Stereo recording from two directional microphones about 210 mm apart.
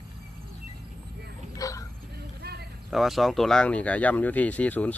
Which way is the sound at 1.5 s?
15° left (ahead or behind).